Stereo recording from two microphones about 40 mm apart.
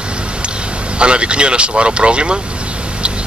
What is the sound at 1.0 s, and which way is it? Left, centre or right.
Speech, right.